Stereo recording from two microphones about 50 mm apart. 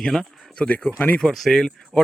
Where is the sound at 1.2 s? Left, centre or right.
Centre.